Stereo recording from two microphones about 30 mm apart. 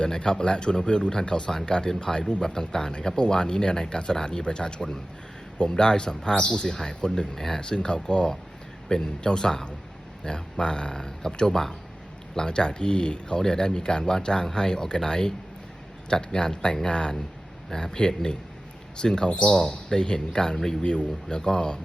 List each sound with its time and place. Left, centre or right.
0.0 s speech: left
6.3 s speech: left
19.4 s speech: left
19.6 s speech: left